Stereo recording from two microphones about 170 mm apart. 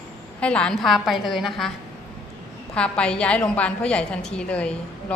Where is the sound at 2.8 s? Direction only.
5° left (ahead or behind).